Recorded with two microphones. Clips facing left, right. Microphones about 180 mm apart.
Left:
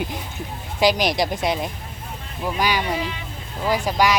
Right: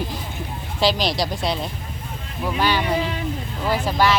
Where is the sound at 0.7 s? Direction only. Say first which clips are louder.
Left 2 dB; 15° left (ahead or behind).